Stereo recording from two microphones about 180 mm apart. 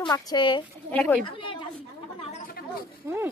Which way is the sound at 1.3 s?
30° left (ahead or behind).